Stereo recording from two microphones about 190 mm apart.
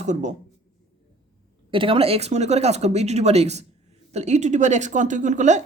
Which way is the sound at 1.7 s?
30° right (ahead or behind).